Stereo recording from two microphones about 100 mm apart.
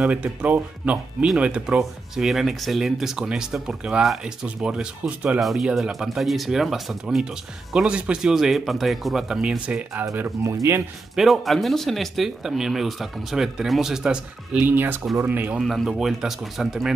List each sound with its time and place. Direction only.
0.0 s speech: 15° right (ahead or behind)
5.4 s speech: centre (ahead or behind)
10.4 s speech: 30° right (ahead or behind)
11.1 s speech: centre (ahead or behind)
14.7 s speech: 20° right (ahead or behind)
15.6 s speech: centre (ahead or behind)